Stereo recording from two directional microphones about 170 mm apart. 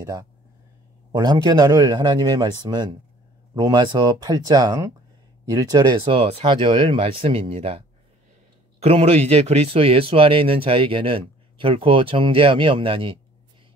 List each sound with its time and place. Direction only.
0.0 s a man's voice: 20° right (ahead or behind)